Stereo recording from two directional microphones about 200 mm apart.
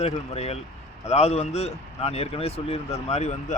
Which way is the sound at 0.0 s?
30° left (ahead or behind).